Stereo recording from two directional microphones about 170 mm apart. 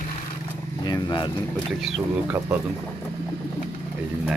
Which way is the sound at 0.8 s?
25° left (ahead or behind).